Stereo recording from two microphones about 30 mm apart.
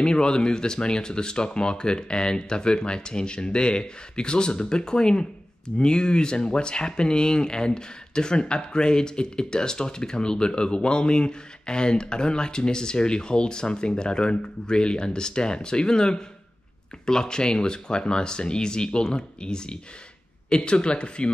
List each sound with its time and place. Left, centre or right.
0.0 s speech: left